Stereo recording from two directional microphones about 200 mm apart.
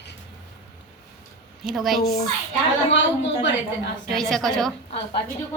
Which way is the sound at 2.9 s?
65° left (ahead or behind).